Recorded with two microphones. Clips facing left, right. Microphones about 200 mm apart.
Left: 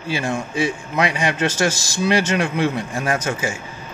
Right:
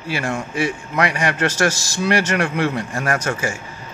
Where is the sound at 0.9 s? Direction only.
20° left (ahead or behind).